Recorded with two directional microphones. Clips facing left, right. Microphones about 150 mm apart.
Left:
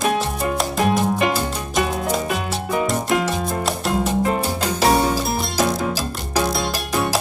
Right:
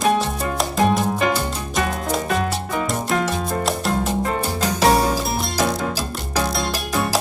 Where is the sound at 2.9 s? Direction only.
Centre (ahead or behind).